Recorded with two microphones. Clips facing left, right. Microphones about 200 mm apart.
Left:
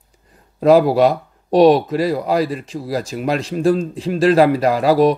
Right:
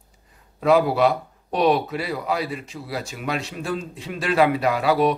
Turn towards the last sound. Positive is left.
turn(degrees=35)  # may be behind; listen again after turning